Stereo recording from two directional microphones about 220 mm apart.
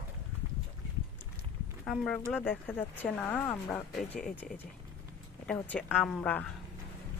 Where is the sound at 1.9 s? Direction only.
5° left (ahead or behind).